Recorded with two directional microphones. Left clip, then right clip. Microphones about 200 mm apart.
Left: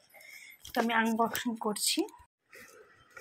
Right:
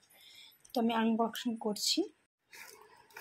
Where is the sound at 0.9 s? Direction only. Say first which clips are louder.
Left 5 dB; 15° left (ahead or behind).